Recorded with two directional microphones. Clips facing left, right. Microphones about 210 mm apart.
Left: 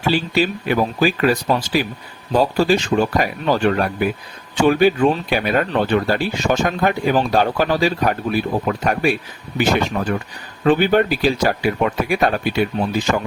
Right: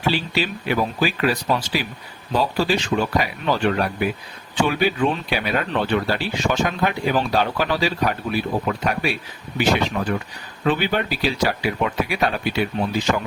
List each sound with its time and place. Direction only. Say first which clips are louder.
0.3 s speech: left 4 dB; 45° left (ahead or behind)